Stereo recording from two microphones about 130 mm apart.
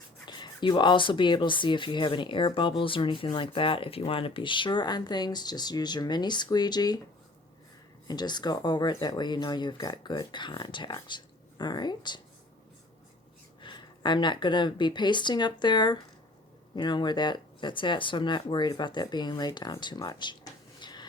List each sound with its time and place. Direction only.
0.3 s speech: 35° left (ahead or behind)
8.0 s speech: 35° left (ahead or behind)
13.6 s speech: 35° left (ahead or behind)